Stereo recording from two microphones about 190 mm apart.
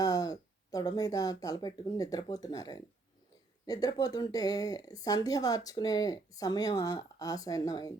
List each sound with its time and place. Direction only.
0.0 s speech: 20° left (ahead or behind)